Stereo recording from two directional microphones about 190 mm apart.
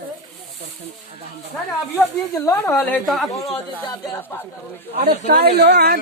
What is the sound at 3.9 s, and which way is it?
Speech, 15° left (ahead or behind).